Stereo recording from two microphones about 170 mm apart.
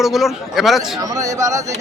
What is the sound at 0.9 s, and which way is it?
Speech, 20° right (ahead or behind).